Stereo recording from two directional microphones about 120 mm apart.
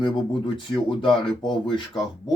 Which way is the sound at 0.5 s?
45° left (ahead or behind).